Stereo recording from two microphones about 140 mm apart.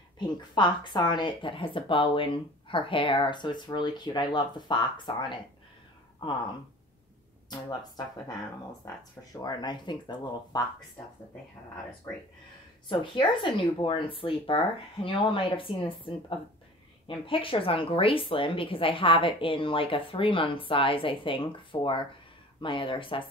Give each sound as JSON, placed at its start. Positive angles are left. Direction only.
{"t": 0.6, "sound": "speech", "side_deg": 35}
{"t": 7.4, "sound": "speech", "side_deg": 30}
{"t": 12.8, "sound": "speech", "side_deg": 35}